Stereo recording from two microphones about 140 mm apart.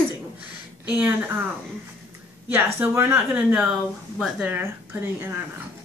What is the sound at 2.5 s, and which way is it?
Speech, 15° right (ahead or behind).